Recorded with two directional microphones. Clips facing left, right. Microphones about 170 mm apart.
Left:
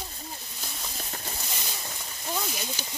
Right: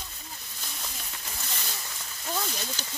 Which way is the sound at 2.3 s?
15° left (ahead or behind).